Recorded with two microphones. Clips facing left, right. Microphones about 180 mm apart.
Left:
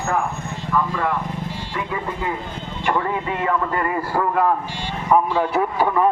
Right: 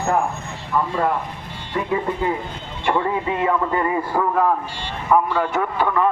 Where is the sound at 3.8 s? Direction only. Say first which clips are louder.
Right 1 dB; 5° right (ahead or behind).